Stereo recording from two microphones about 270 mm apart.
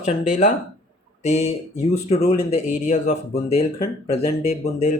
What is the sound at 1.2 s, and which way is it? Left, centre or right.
Speech, left.